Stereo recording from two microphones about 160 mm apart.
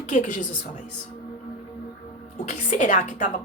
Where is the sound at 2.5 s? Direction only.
50° left (ahead or behind).